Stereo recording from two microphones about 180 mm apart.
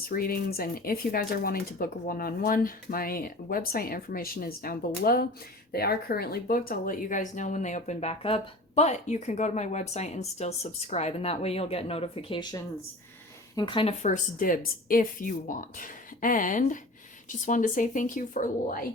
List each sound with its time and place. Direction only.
0.0 s speech: 55° left (ahead or behind); by 13.9 s 25° left (ahead or behind)
14.0 s speech: 45° left (ahead or behind)